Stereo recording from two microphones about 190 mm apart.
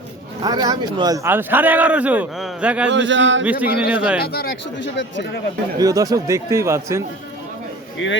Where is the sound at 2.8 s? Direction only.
70° right (ahead or behind).